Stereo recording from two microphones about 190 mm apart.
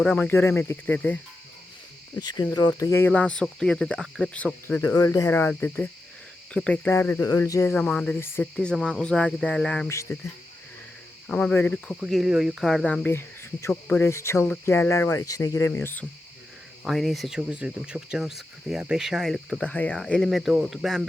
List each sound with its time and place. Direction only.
0.0 s cricket: 5° left (ahead or behind)
2.1 s cricket: 20° left (ahead or behind)
8.5 s speech: 5° left (ahead or behind)
9.9 s cricket: 15° left (ahead or behind)
11.3 s cricket: 5° left (ahead or behind)
11.9 s speech: centre (ahead or behind); by 14.5 s 15° left (ahead or behind)
14.6 s cricket: 15° left (ahead or behind)
16.8 s speech: centre (ahead or behind)